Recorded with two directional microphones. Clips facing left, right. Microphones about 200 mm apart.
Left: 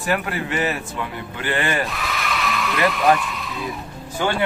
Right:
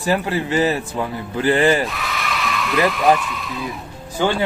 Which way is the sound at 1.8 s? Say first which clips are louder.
Even; centre (ahead or behind).